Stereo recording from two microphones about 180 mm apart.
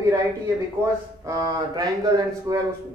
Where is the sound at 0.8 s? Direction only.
15° right (ahead or behind).